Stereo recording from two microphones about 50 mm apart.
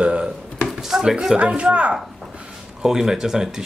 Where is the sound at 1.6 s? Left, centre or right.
Right.